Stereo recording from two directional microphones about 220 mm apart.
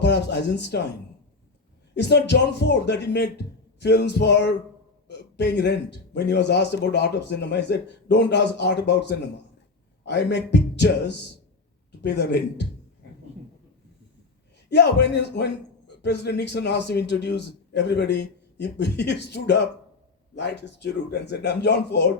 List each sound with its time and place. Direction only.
0.0 s a man's voice: 50° left (ahead or behind)
2.0 s a man's voice: 50° left (ahead or behind)
14.7 s a man's voice: 50° left (ahead or behind)